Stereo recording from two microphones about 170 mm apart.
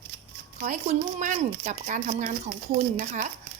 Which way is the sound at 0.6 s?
45° right (ahead or behind).